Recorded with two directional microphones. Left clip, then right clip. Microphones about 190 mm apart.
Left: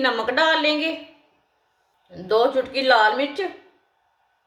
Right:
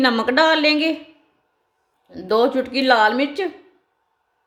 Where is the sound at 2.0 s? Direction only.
50° right (ahead or behind).